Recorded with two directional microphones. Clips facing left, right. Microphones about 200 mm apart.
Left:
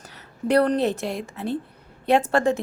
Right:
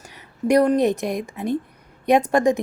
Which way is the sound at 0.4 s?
10° right (ahead or behind).